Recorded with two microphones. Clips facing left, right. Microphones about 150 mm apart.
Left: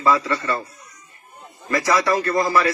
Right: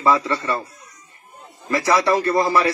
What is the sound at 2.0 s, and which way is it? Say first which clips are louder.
Speech: right 3 dB; 25° right (ahead or behind).